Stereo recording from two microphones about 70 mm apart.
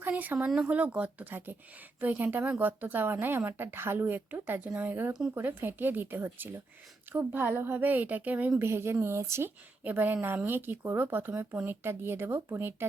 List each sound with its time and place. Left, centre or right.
0.0 s a woman's voice: right
8.6 s speech: right
9.8 s a woman's voice: right